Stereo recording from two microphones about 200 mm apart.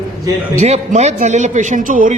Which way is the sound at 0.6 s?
35° right (ahead or behind).